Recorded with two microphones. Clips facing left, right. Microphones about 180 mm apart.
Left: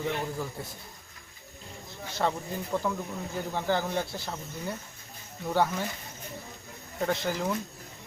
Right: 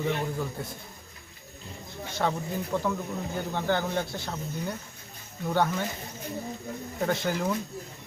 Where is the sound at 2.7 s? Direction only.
5° left (ahead or behind).